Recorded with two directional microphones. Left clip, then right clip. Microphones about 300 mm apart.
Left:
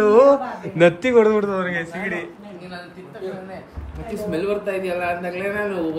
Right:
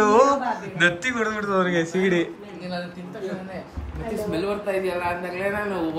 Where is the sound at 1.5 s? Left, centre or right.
Centre.